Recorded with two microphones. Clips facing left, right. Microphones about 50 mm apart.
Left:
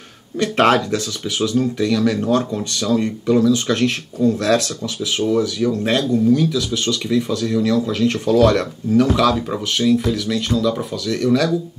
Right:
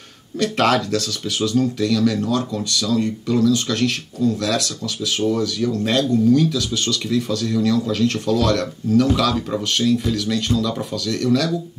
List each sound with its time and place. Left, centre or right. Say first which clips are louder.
0.4 s speech: left 3 dB; left